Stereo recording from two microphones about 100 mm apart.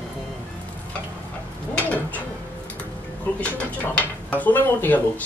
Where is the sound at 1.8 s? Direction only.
15° left (ahead or behind).